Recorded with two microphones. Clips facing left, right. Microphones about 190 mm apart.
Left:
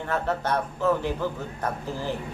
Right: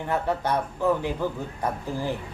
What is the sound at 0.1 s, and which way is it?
A man's voice, 10° right (ahead or behind).